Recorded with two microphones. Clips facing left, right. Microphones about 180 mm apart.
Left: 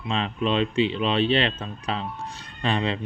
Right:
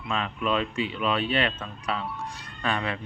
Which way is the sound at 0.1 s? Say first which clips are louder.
Left 2 dB; 25° left (ahead or behind).